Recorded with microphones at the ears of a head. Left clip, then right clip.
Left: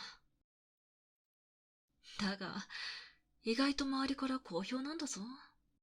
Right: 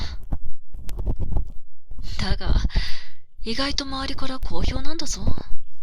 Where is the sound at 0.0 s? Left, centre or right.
Right.